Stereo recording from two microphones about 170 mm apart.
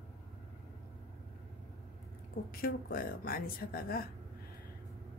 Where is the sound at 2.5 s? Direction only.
60° left (ahead or behind).